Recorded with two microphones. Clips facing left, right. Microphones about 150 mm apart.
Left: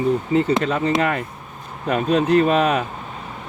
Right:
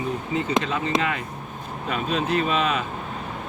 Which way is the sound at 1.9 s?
50° left (ahead or behind).